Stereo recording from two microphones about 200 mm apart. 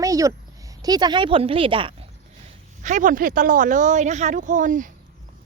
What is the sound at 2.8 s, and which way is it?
Speech, 40° right (ahead or behind).